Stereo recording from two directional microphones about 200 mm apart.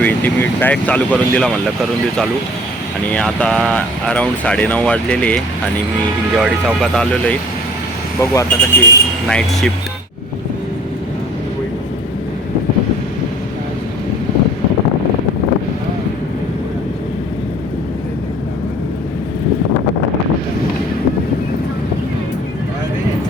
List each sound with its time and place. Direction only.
0.0 s speech: 10° left (ahead or behind)
3.1 s speech: 5° left (ahead or behind)
6.4 s speech: centre (ahead or behind)
8.2 s speech: 15° left (ahead or behind)
9.3 s speech: 5° left (ahead or behind)